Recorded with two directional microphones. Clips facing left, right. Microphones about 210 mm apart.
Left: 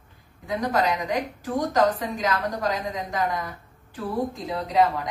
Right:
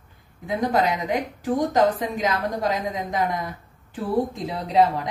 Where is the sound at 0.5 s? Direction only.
25° right (ahead or behind).